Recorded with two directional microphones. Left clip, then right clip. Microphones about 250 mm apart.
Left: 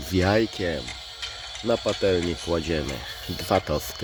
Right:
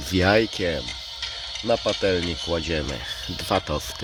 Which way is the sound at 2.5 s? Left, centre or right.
Centre.